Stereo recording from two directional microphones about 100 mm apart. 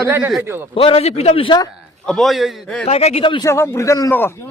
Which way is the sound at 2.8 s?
90° left.